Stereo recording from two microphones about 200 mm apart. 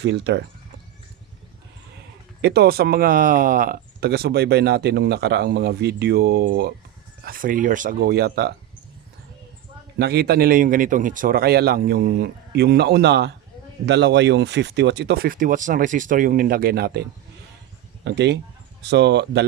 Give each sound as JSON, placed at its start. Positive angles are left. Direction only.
{"t": 0.0, "sound": "speech", "side_deg": -60}
{"t": 2.4, "sound": "speech", "side_deg": -55}
{"t": 10.0, "sound": "speech", "side_deg": -50}